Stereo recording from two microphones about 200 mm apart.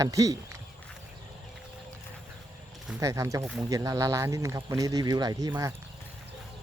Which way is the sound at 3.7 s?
15° right (ahead or behind).